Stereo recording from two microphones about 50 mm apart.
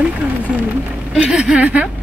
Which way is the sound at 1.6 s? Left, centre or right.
Right.